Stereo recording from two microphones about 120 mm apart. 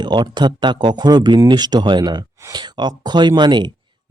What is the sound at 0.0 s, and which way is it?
Speech, 40° right (ahead or behind).